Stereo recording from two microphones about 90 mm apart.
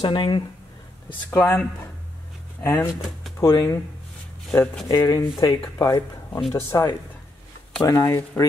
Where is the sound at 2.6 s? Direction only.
30° left (ahead or behind).